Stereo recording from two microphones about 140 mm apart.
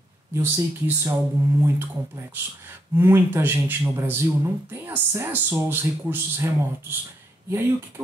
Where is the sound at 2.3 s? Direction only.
15° right (ahead or behind).